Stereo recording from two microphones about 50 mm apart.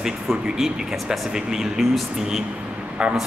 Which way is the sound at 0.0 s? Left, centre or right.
Centre.